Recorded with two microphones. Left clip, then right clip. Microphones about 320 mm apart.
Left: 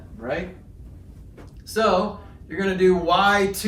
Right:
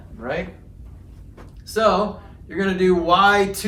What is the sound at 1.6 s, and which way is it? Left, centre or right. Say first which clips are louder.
Speech: right 2 dB; centre.